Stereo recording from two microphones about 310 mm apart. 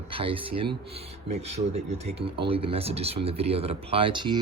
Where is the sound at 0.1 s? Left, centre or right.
Centre.